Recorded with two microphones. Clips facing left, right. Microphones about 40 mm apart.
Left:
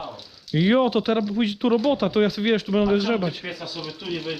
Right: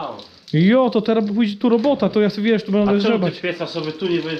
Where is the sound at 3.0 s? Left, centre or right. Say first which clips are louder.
Right 6 dB; right.